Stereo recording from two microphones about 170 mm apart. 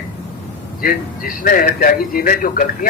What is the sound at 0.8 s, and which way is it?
A man's voice, 55° left (ahead or behind).